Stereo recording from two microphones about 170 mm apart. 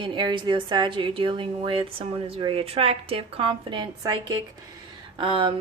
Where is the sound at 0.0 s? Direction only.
30° right (ahead or behind).